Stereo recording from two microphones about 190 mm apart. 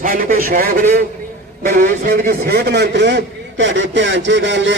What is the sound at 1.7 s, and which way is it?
A man's voice, 45° right (ahead or behind).